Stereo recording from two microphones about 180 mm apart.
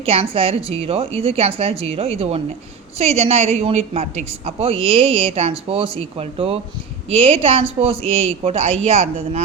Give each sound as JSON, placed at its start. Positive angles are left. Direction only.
{"t": 0.0, "sound": "a woman's voice", "side_deg": -30}